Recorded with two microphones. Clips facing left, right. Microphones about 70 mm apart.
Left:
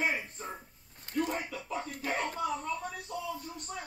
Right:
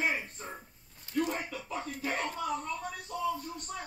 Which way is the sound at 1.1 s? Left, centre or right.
Centre.